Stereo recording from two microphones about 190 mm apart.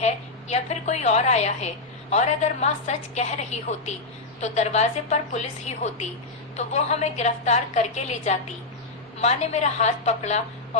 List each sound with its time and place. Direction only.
0.0 s a woman's voice: 35° left (ahead or behind)